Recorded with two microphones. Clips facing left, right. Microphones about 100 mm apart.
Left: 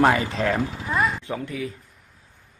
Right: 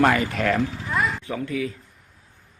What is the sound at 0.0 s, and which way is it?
Speech, 25° left (ahead or behind).